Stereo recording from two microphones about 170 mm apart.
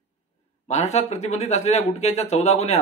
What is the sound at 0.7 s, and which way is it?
Speech, 40° left (ahead or behind).